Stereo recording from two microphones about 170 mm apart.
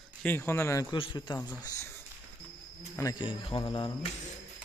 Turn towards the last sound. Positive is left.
turn(degrees=25)  # may be behind; listen again after turning